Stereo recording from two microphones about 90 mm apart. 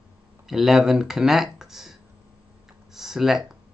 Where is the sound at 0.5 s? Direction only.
5° right (ahead or behind).